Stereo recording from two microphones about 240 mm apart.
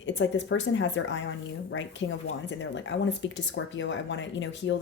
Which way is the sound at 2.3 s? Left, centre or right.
Left.